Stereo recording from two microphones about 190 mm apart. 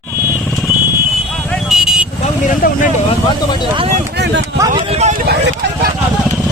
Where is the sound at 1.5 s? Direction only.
Centre (ahead or behind).